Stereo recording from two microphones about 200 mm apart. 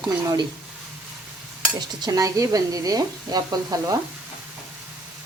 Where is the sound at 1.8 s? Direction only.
20° right (ahead or behind).